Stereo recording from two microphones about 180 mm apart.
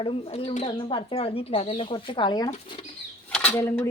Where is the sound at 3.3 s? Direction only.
10° left (ahead or behind).